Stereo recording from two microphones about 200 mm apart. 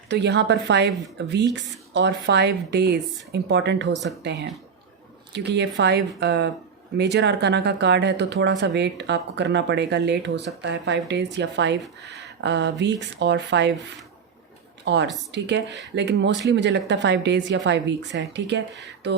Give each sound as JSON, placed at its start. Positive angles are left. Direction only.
{"t": 0.1, "sound": "speech", "side_deg": -60}
{"t": 14.8, "sound": "speech", "side_deg": -60}